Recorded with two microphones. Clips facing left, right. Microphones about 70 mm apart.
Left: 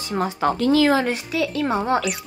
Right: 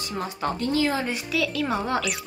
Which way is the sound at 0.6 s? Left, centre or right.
Left.